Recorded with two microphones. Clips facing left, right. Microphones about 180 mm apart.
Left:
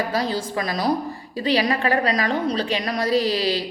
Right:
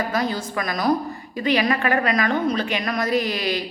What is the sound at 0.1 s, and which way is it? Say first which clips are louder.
A woman's voice: even; 30° left (ahead or behind).